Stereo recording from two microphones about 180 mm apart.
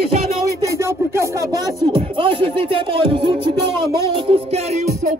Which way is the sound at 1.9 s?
30° right (ahead or behind).